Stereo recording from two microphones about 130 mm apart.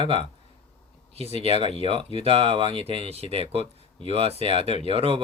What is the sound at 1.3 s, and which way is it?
Speech, 50° right (ahead or behind).